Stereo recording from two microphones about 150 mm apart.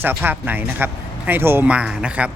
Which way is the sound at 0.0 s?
15° right (ahead or behind).